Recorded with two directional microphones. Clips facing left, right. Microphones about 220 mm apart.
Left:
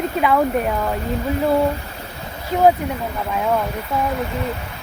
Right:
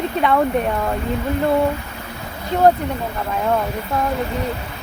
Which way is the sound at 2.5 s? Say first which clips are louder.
Even; 5° left (ahead or behind).